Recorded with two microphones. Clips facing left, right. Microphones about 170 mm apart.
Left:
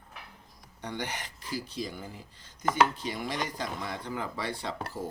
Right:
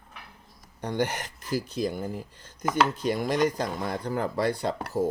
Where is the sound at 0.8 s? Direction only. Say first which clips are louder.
Right 8 dB; 45° right (ahead or behind).